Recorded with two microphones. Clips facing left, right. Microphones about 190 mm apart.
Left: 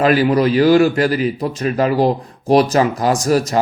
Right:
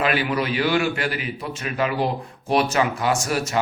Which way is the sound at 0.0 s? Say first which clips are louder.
Left 9 dB; 40° left (ahead or behind).